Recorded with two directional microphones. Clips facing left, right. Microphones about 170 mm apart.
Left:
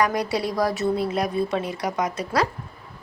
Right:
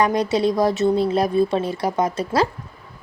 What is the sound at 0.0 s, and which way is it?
A woman's voice, 20° right (ahead or behind).